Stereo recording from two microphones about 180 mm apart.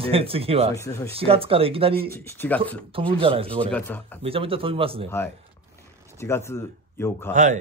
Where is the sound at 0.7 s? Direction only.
15° left (ahead or behind).